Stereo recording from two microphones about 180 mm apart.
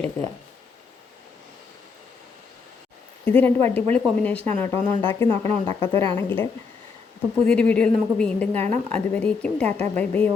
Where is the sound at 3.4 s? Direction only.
10° left (ahead or behind).